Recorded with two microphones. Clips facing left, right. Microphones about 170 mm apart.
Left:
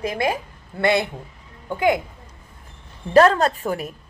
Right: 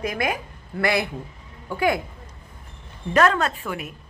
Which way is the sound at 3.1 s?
35° left (ahead or behind).